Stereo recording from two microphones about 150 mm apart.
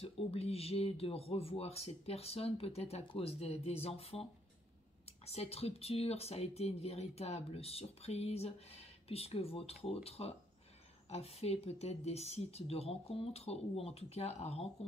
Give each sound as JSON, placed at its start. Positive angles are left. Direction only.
{"t": 0.0, "sound": "speech", "side_deg": 40}